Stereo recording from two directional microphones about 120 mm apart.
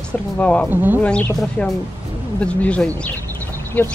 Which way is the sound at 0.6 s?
15° right (ahead or behind).